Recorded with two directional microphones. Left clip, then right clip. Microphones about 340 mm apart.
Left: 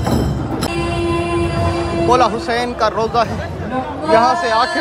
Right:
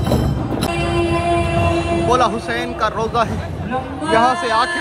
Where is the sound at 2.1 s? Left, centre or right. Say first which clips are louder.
Left 4 dB; centre.